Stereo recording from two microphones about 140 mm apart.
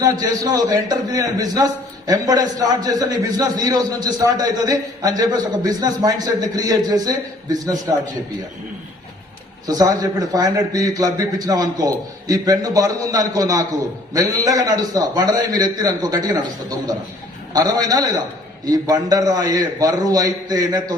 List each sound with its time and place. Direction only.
0.0 s a man's voice: 25° right (ahead or behind)
9.6 s a man's voice: 25° right (ahead or behind)